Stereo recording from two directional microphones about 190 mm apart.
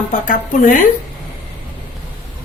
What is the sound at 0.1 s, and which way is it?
Speech, 45° left (ahead or behind).